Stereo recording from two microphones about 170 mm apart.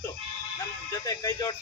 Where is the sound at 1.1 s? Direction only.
20° left (ahead or behind).